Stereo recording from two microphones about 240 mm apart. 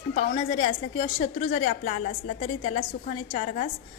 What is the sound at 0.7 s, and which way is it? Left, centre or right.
A woman's voice, left.